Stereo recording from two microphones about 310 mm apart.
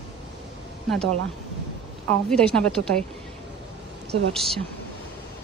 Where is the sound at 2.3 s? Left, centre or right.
Centre.